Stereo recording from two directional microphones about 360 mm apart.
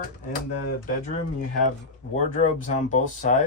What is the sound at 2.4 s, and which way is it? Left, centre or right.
Speech, centre.